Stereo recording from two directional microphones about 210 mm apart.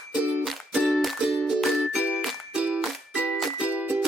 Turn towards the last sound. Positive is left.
turn(degrees=-5)  # may be behind; listen again after turning